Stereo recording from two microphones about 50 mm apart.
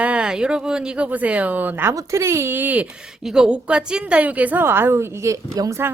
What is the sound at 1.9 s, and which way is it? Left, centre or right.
Speech, right.